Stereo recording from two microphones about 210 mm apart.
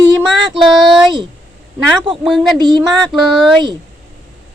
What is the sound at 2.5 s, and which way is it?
Speech, 20° right (ahead or behind).